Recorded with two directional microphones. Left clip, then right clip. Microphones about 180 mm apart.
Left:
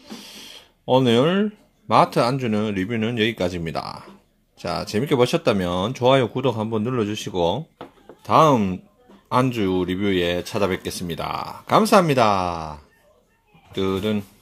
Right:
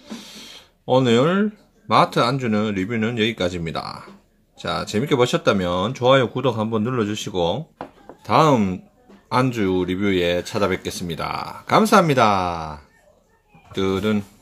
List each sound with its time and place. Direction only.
0.0 s speech: 20° left (ahead or behind)